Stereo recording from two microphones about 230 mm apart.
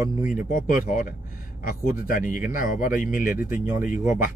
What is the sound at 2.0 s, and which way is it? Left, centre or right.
Speech, left.